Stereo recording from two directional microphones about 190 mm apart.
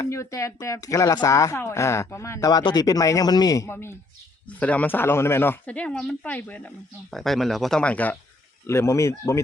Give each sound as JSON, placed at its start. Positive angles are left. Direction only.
{"t": 0.0, "sound": "speech", "side_deg": 15}